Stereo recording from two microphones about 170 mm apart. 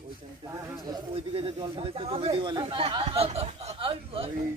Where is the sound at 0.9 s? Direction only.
20° right (ahead or behind).